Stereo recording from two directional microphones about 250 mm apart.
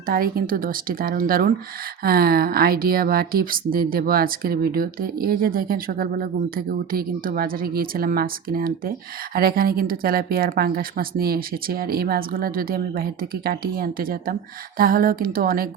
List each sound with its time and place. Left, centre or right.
0.1 s speech: right